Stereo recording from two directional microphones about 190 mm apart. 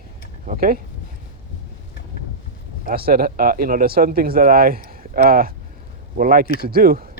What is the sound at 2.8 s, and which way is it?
Speech, 50° right (ahead or behind).